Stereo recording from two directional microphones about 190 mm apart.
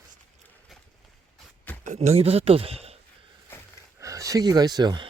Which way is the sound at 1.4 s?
5° left (ahead or behind).